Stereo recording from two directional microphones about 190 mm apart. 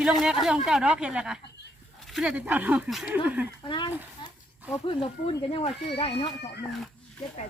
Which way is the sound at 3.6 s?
25° left (ahead or behind).